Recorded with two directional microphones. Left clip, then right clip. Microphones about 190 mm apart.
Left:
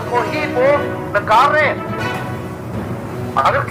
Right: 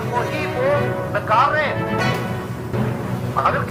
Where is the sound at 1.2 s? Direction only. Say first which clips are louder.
Left 5 dB; 45° left (ahead or behind).